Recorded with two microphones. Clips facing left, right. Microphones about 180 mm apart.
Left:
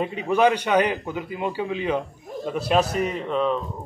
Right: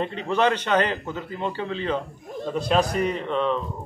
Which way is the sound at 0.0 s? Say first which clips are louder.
Left 3 dB; 10° left (ahead or behind).